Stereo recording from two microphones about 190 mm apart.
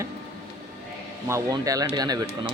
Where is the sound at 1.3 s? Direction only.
20° right (ahead or behind).